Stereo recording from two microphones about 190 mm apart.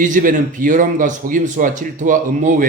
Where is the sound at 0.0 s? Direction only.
45° right (ahead or behind).